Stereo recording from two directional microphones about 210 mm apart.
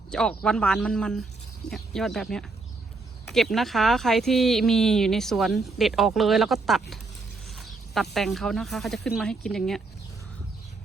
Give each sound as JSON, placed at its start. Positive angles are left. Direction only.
{"t": 0.1, "sound": "speech", "side_deg": 5}
{"t": 7.4, "sound": "a sound", "side_deg": 0}
{"t": 8.1, "sound": "speech", "side_deg": 0}